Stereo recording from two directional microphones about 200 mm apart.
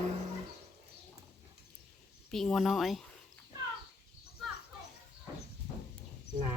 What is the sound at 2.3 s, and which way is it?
Speech, centre (ahead or behind).